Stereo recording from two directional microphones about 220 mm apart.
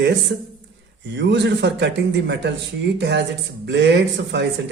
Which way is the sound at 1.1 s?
50° right (ahead or behind).